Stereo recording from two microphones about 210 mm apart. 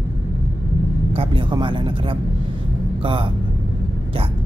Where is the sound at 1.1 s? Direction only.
25° right (ahead or behind).